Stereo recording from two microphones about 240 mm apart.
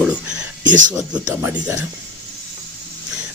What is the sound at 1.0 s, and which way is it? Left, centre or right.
Speech, centre.